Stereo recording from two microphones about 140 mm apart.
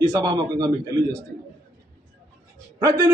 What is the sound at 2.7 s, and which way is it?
Speech, 25° right (ahead or behind).